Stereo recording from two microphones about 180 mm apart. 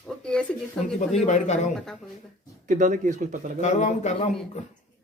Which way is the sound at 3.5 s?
40° left (ahead or behind).